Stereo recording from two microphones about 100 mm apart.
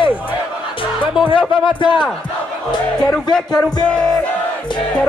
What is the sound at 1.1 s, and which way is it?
Speech, 55° left (ahead or behind).